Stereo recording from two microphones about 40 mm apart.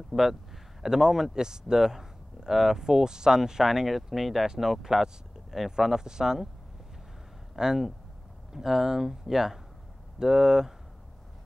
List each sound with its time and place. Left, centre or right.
0.1 s a man's voice: centre
4.8 s a man's voice: centre
7.5 s a man's voice: centre